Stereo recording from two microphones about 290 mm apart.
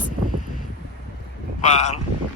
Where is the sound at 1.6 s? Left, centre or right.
Left.